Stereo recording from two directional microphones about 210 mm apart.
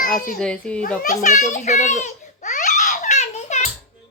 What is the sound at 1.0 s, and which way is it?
Crying, 40° left (ahead or behind).